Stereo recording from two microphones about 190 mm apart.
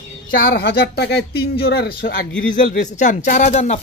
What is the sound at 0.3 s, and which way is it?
Speech, 55° left (ahead or behind).